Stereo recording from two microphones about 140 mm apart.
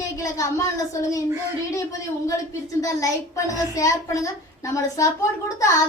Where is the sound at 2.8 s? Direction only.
25° left (ahead or behind).